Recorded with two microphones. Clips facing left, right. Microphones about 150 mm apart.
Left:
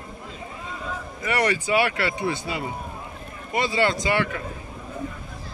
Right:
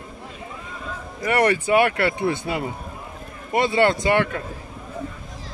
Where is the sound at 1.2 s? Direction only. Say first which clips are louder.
Right 4 dB; 55° right (ahead or behind).